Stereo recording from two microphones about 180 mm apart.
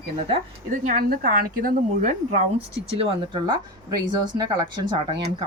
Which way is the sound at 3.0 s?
30° right (ahead or behind).